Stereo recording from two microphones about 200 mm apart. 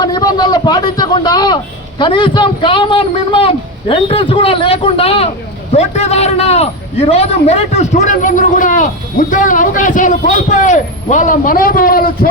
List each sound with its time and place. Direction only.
0.0 s a man's voice: 20° left (ahead or behind); by 12.3 s 45° left (ahead or behind)